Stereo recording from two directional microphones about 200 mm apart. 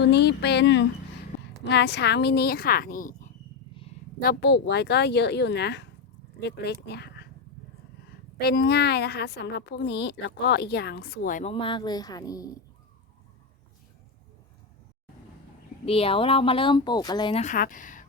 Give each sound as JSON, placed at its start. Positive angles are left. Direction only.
{"t": 0.0, "sound": "a woman's voice", "side_deg": 55}
{"t": 4.2, "sound": "a woman's voice", "side_deg": 50}
{"t": 8.4, "sound": "a woman's voice", "side_deg": 55}
{"t": 11.5, "sound": "speech", "side_deg": 25}
{"t": 15.9, "sound": "speech", "side_deg": 30}
{"t": 17.4, "sound": "a woman's voice", "side_deg": 40}